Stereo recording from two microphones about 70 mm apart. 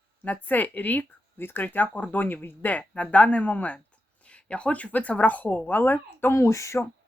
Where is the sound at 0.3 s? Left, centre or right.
Left.